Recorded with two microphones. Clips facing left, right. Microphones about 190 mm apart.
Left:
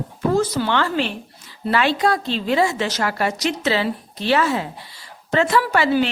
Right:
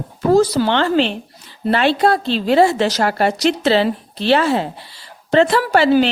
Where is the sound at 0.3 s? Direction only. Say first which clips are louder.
Right 6 dB; 35° right (ahead or behind).